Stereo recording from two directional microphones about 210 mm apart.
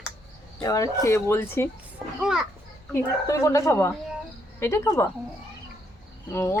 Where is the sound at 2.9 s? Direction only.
15° left (ahead or behind).